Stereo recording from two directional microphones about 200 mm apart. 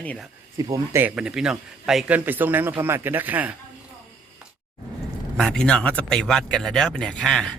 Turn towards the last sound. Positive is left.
turn(degrees=5)  # may be behind; listen again after turning